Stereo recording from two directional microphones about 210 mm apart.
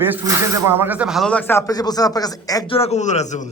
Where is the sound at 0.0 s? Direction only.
10° right (ahead or behind).